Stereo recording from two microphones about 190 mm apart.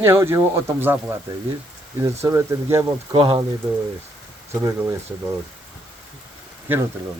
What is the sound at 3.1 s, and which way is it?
Speech, 25° right (ahead or behind).